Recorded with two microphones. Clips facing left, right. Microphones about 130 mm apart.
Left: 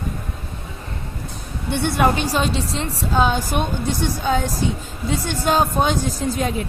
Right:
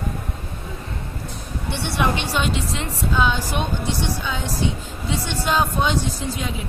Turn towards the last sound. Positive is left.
turn(degrees=45)  # may be behind; listen again after turning